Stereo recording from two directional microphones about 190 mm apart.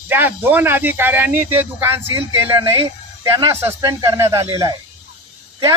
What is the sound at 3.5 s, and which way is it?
Speech, 15° right (ahead or behind).